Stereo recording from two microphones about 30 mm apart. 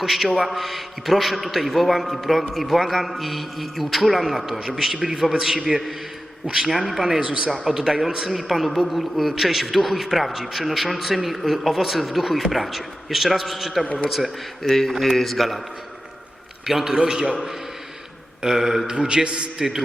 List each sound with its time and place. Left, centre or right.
0.0 s a man's voice: centre
5.7 s a man's voice: centre
7.2 s a man's voice: right
7.5 s speech: centre
7.8 s speech: right
8.4 s a man's voice: centre
13.8 s a man's voice: left
14.6 s a man's voice: centre
16.6 s speech: centre
16.9 s speech: right
18.4 s speech: centre
18.9 s a man's voice: right
19.5 s speech: centre